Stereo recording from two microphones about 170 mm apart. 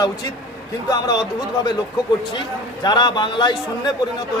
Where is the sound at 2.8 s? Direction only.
25° left (ahead or behind).